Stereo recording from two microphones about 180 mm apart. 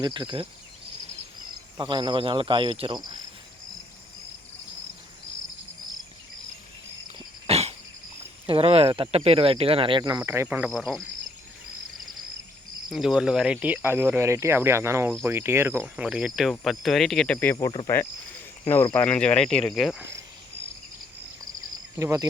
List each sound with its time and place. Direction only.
0.0 s speech: 25° right (ahead or behind)
1.8 s speech: 25° right (ahead or behind)
7.4 s dog: 35° right (ahead or behind)
8.4 s speech: 30° right (ahead or behind); by 10.7 s 10° right (ahead or behind)
10.7 s speech: centre (ahead or behind)
12.9 s speech: centre (ahead or behind); by 17.7 s 15° left (ahead or behind)
18.7 s speech: 10° left (ahead or behind)
21.9 s speech: 15° right (ahead or behind)